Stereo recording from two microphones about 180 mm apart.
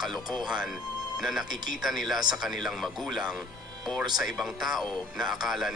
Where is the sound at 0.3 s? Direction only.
5° right (ahead or behind).